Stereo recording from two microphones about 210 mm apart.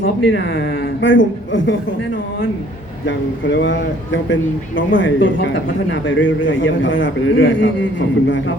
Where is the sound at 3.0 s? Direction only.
60° left (ahead or behind).